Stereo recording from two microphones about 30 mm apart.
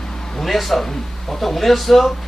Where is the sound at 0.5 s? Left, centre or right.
Centre.